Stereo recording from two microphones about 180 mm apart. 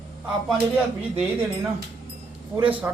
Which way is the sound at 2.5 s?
10° right (ahead or behind).